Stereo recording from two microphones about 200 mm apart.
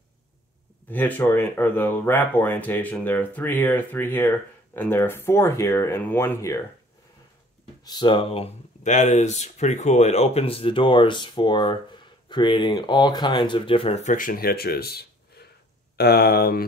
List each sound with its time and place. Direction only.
0.8 s speech: 10° left (ahead or behind)
7.8 s speech: 20° left (ahead or behind); by 16.6 s 50° left (ahead or behind)